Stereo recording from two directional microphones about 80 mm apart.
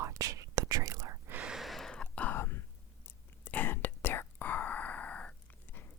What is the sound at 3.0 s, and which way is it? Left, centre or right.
Whispering, left.